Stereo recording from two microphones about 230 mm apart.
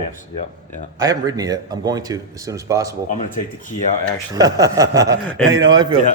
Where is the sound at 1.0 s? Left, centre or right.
Centre.